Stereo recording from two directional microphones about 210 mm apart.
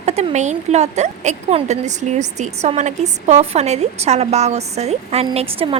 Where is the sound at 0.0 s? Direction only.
30° right (ahead or behind).